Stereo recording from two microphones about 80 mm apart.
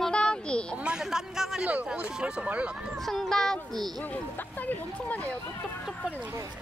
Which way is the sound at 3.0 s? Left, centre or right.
Centre.